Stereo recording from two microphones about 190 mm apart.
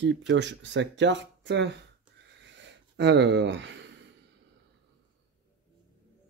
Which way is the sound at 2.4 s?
70° right (ahead or behind).